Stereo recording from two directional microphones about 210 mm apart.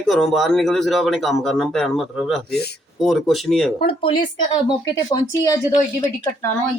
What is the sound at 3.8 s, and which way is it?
Speech, 25° left (ahead or behind).